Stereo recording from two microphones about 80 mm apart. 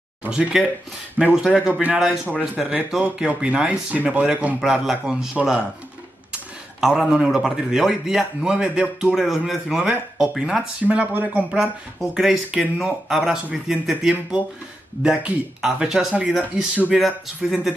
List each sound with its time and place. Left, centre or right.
0.3 s a man's voice: centre
1.7 s a man's voice: centre
2.6 s a man's voice: centre
4.6 s a man's voice: centre
6.8 s a man's voice: centre
11.6 s a man's voice: centre